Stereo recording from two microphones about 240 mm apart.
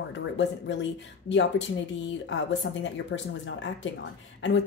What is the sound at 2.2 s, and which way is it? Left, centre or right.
Speech, left.